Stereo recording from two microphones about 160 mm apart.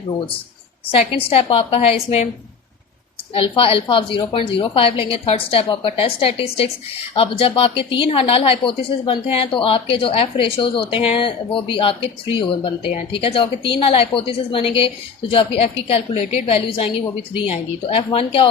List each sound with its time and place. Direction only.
0.9 s a woman's voice: 35° left (ahead or behind)
3.3 s a woman's voice: 35° left (ahead or behind)